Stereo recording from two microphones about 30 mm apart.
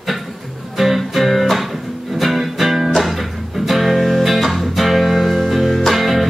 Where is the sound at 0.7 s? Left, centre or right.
Centre.